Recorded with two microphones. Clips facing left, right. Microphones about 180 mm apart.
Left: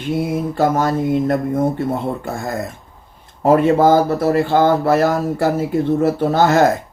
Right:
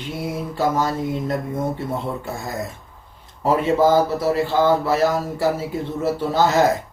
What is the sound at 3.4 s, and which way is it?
Speech, 55° left (ahead or behind).